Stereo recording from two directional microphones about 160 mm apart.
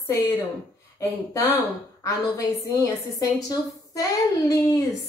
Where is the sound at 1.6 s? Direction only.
20° left (ahead or behind).